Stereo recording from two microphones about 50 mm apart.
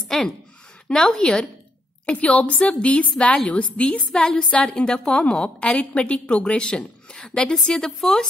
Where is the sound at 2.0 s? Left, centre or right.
Left.